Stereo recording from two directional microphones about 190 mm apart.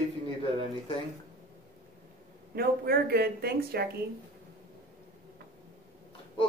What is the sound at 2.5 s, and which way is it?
Speech, 55° right (ahead or behind).